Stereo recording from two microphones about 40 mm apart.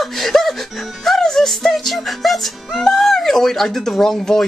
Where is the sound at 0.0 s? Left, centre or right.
Centre.